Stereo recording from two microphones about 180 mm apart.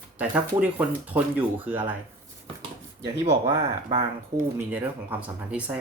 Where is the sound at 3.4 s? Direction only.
30° right (ahead or behind).